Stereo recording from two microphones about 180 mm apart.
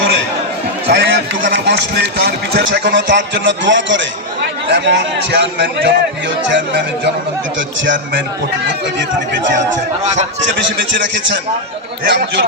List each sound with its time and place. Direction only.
0.9 s a man's voice: 65° right (ahead or behind); by 4.0 s 90° right
4.7 s a man's voice: 70° right (ahead or behind)
9.0 s speech: 80° right
10.6 s a man's voice: 80° right